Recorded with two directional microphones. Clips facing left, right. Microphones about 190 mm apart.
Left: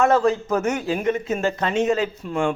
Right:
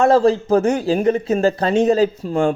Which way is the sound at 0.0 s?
30° right (ahead or behind).